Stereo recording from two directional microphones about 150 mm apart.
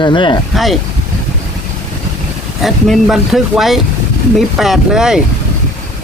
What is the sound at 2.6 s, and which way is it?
Speech, centre (ahead or behind).